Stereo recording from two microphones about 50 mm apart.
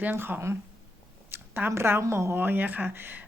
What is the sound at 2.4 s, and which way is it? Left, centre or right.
Speech, right.